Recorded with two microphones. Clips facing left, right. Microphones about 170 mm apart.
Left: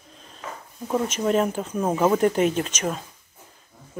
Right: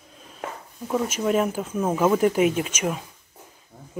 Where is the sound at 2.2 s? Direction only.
5° right (ahead or behind).